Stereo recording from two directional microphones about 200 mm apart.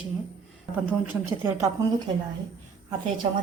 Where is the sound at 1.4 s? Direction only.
15° right (ahead or behind).